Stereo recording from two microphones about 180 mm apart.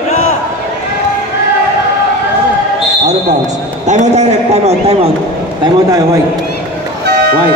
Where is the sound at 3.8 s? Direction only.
40° right (ahead or behind).